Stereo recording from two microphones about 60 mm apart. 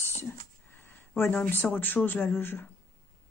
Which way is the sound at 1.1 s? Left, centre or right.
Left.